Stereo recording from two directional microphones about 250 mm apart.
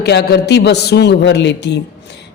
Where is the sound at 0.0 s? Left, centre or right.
Left.